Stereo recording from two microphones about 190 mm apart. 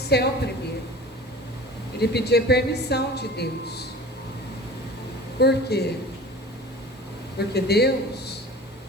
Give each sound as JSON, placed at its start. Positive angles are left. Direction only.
{"t": 0.1, "sound": "a man's voice", "side_deg": 60}
{"t": 2.0, "sound": "a man's voice", "side_deg": 60}
{"t": 5.4, "sound": "a man's voice", "side_deg": 60}
{"t": 7.3, "sound": "a man's voice", "side_deg": 60}